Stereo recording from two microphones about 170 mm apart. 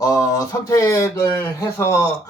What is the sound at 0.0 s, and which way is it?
Speech, 20° left (ahead or behind).